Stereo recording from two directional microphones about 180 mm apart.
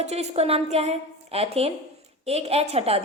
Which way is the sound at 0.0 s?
35° right (ahead or behind).